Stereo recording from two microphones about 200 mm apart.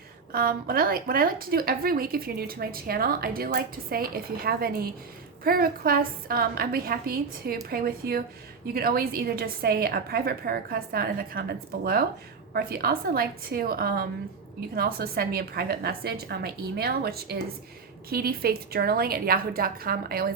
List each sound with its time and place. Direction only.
0.3 s a woman's voice: 45° right (ahead or behind)